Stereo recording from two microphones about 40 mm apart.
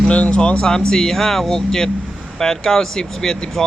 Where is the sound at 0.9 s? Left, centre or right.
Centre.